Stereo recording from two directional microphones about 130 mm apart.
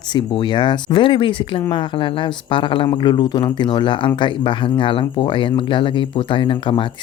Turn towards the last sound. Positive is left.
turn(degrees=40)  # may be behind; listen again after turning